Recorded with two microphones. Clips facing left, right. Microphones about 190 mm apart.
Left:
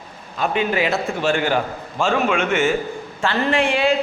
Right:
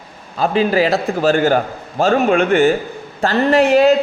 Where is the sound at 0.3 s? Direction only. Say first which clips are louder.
Right 5 dB; 35° right (ahead or behind).